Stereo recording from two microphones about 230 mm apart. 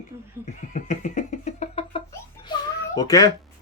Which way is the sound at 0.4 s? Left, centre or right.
Left.